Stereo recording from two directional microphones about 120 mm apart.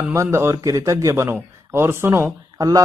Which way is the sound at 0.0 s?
25° right (ahead or behind).